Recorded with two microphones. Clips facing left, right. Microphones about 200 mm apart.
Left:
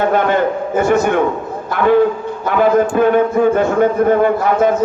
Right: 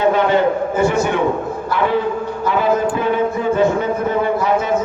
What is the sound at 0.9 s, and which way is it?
Speech, 50° left (ahead or behind).